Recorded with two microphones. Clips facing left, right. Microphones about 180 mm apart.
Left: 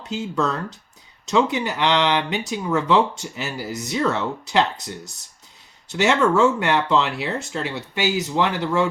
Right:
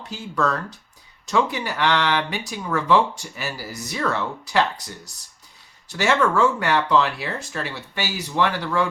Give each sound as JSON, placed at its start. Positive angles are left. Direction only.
{"t": 0.1, "sound": "speech", "side_deg": 20}
{"t": 5.9, "sound": "speech", "side_deg": 20}